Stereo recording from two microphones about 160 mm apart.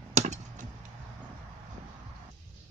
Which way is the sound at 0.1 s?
45° right (ahead or behind).